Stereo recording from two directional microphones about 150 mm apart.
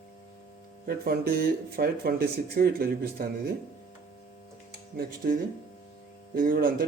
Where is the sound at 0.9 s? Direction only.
90° right.